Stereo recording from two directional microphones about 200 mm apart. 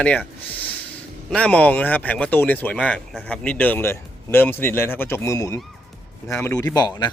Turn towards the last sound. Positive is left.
turn(degrees=20)  # may be behind; listen again after turning